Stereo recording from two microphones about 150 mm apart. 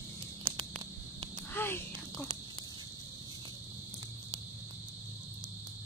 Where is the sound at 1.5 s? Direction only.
15° left (ahead or behind).